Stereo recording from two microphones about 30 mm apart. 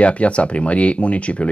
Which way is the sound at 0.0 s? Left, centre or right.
Left.